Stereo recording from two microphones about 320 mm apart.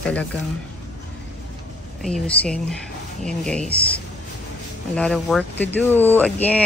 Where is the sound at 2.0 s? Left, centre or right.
Centre.